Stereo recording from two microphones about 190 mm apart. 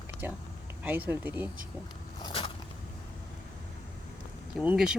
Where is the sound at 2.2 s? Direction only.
25° left (ahead or behind).